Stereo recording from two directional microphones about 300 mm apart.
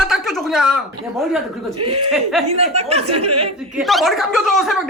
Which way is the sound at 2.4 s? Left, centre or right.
Right.